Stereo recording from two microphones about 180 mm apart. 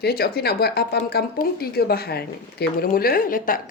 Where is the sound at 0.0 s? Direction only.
60° left (ahead or behind).